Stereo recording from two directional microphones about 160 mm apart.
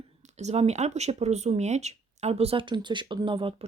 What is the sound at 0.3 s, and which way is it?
Speech, 45° right (ahead or behind).